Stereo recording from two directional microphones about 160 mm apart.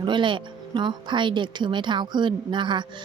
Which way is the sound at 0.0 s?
30° right (ahead or behind).